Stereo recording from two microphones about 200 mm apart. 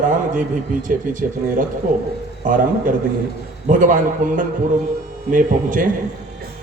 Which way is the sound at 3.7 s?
40° right (ahead or behind).